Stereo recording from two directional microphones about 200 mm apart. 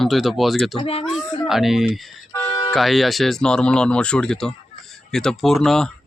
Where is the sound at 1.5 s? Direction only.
Centre (ahead or behind).